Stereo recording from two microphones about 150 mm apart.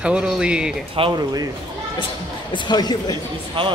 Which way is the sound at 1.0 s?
40° right (ahead or behind).